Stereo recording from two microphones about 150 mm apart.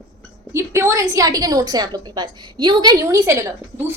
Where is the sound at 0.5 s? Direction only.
20° right (ahead or behind).